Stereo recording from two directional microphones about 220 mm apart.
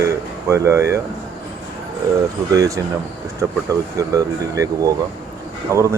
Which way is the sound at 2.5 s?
15° right (ahead or behind).